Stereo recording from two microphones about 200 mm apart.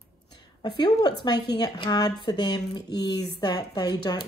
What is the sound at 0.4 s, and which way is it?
A woman's voice, 25° left (ahead or behind).